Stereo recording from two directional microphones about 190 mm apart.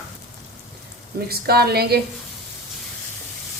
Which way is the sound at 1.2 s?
55° right (ahead or behind).